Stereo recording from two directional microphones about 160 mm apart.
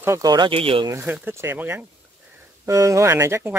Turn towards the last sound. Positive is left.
turn(degrees=-15)  # may be behind; listen again after turning